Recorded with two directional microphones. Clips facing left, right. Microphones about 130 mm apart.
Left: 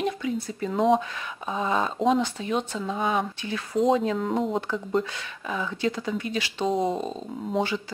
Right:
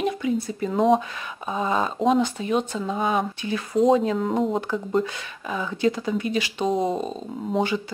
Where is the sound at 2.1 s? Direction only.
15° right (ahead or behind).